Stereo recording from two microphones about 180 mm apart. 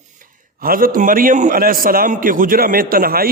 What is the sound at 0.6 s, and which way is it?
A man's voice, 55° right (ahead or behind).